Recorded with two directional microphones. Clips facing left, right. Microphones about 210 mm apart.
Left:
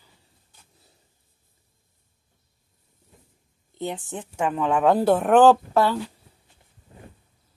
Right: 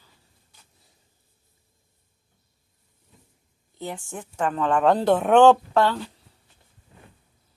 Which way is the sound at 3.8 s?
20° left (ahead or behind).